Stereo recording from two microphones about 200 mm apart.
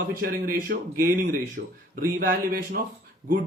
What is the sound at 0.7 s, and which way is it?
Speech, 55° right (ahead or behind).